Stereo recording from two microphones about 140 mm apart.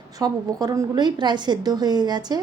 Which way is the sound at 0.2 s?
25° right (ahead or behind).